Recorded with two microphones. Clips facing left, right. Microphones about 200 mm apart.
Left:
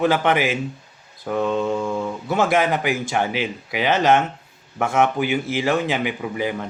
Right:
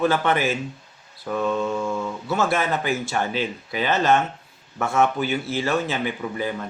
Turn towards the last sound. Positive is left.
turn(degrees=15)  # may be behind; listen again after turning